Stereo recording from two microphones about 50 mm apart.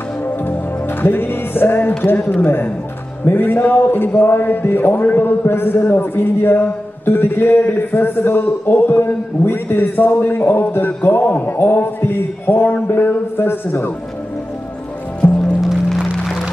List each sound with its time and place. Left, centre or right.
1.0 s speech: left
15.2 s music: left